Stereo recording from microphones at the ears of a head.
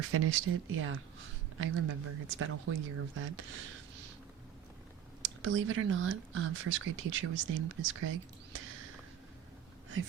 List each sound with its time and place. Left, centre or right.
0.0 s speech: right
5.2 s speech: right